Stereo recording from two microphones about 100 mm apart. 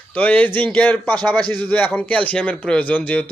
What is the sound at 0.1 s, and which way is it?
Speech, 15° left (ahead or behind).